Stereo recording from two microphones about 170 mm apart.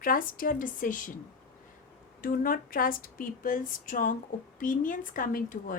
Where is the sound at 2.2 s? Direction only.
55° left (ahead or behind).